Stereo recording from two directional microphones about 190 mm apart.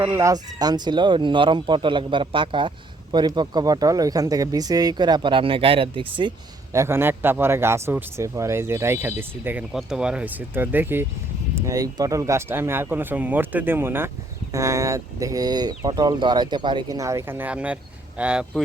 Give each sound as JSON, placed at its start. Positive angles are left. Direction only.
{"t": 0.0, "sound": "speech", "side_deg": -15}
{"t": 6.7, "sound": "speech", "side_deg": -15}